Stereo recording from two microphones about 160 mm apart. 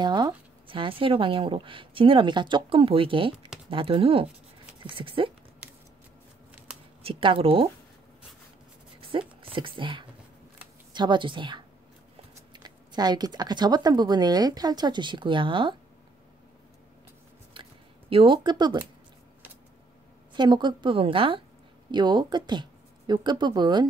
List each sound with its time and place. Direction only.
0.0 s a woman's voice: 30° right (ahead or behind)
7.0 s a woman's voice: 35° right (ahead or behind)
9.4 s speech: 35° right (ahead or behind)
17.6 s a sound: 35° right (ahead or behind)
18.1 s speech: 30° right (ahead or behind)
20.3 s a woman's voice: 30° right (ahead or behind)